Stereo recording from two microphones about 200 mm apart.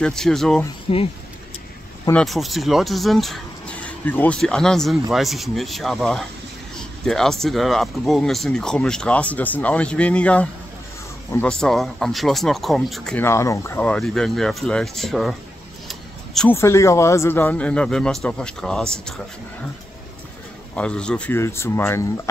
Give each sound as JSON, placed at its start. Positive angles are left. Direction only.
{"t": 0.0, "sound": "speech", "side_deg": 5}
{"t": 0.9, "sound": "speech", "side_deg": 25}
{"t": 2.0, "sound": "speech", "side_deg": 5}
{"t": 15.9, "sound": "a sound", "side_deg": 0}
{"t": 16.5, "sound": "speech", "side_deg": 15}
{"t": 20.7, "sound": "speech", "side_deg": 5}